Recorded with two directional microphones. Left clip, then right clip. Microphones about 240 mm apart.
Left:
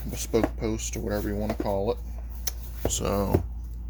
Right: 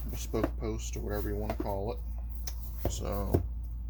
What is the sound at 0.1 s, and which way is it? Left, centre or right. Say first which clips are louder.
Speech: left 8 dB; left.